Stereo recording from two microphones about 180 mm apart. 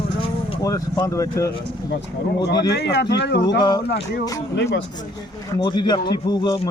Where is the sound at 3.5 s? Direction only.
25° left (ahead or behind).